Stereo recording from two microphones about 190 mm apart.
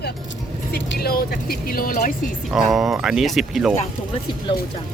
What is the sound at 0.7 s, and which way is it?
Speech, 55° left (ahead or behind).